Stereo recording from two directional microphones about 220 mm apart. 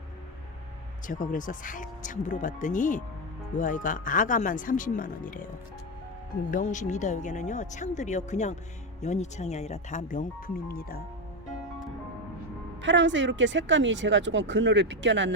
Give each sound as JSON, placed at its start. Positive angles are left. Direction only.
{"t": 1.0, "sound": "speech", "side_deg": 35}
{"t": 6.5, "sound": "speech", "side_deg": 35}
{"t": 12.8, "sound": "speech", "side_deg": -55}